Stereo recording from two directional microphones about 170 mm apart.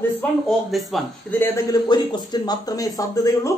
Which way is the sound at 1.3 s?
15° left (ahead or behind).